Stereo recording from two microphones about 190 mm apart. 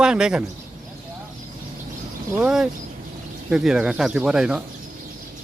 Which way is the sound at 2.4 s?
5° right (ahead or behind).